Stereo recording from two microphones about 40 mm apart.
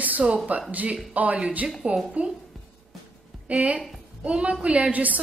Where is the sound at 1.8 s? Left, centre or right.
Right.